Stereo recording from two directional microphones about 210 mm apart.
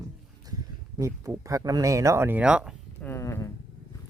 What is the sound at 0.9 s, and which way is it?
Speech, 15° right (ahead or behind).